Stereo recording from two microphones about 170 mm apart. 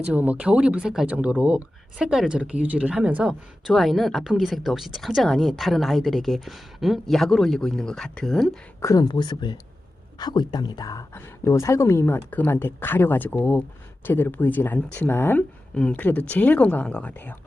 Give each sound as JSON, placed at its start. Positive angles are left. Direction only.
{"t": 0.1, "sound": "speech", "side_deg": -10}
{"t": 8.8, "sound": "speech", "side_deg": 20}